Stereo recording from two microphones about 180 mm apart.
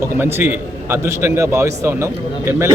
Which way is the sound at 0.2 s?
10° right (ahead or behind).